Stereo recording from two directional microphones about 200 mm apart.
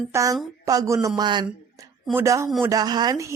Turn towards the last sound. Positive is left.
turn(degrees=-15)  # may be behind; listen again after turning